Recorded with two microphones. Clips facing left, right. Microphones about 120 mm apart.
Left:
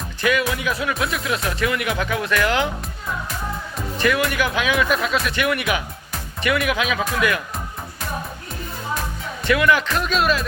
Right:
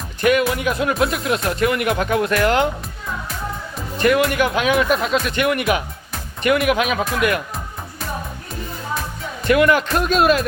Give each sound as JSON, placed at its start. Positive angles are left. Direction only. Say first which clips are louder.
{"t": 0.2, "sound": "music", "louder": "right 4 dB", "side_deg": -45}
{"t": 0.5, "sound": "speech", "louder": "right 4 dB", "side_deg": -45}
{"t": 0.9, "sound": "speech", "louder": "right 4 dB", "side_deg": -30}
{"t": 1.5, "sound": "speech", "louder": "right 5 dB", "side_deg": -45}
{"t": 4.0, "sound": "speech", "louder": "right 4 dB", "side_deg": -40}
{"t": 9.5, "sound": "speech", "louder": "right 3 dB", "side_deg": -40}